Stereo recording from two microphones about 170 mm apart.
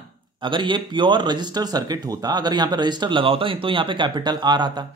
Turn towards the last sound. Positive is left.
turn(degrees=-25)  # may be behind; listen again after turning